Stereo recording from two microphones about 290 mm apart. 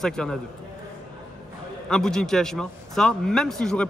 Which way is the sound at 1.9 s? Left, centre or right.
Centre.